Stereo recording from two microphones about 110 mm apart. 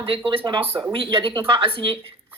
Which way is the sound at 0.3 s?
50° right (ahead or behind).